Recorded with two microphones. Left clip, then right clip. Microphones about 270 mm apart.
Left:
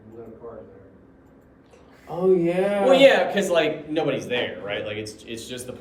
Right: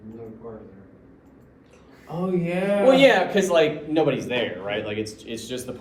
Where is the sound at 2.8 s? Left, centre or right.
Centre.